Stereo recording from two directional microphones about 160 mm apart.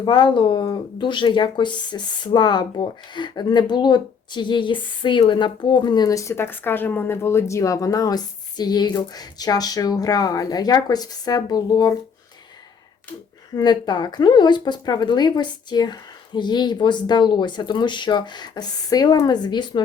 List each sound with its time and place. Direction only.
0.0 s speech: 30° left (ahead or behind)
13.6 s speech: 30° left (ahead or behind)